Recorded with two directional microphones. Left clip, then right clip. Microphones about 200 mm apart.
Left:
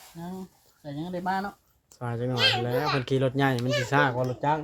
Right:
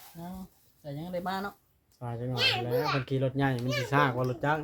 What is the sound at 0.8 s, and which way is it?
Speech, 45° right (ahead or behind).